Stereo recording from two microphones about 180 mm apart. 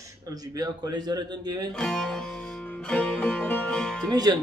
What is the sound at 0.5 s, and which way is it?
A man's voice, 20° right (ahead or behind).